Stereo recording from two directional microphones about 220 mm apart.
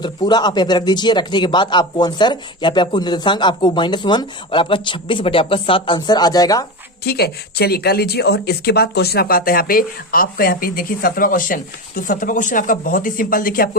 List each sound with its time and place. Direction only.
0.0 s speech: 20° left (ahead or behind)
7.0 s speech: 45° left (ahead or behind)